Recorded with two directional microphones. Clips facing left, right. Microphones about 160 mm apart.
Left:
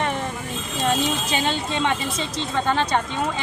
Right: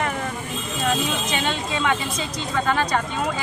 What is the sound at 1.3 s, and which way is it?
A woman's voice, 30° left (ahead or behind).